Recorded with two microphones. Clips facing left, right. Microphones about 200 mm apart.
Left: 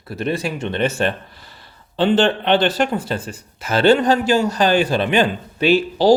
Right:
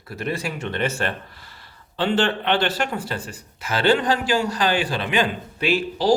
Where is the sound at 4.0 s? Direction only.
45° left (ahead or behind).